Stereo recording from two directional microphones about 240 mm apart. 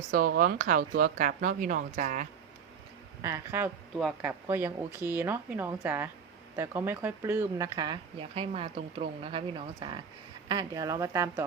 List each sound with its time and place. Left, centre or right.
0.1 s speech: right
3.2 s speech: centre